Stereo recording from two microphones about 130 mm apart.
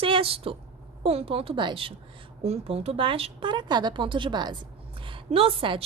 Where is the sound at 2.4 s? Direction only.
50° right (ahead or behind).